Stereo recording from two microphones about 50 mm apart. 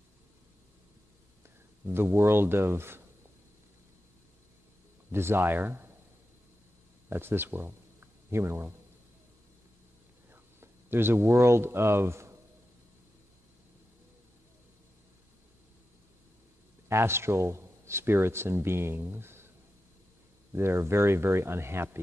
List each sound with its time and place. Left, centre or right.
1.9 s speech: right
5.1 s speech: right
7.1 s speech: right
10.3 s speech: right
16.9 s speech: right
20.5 s speech: right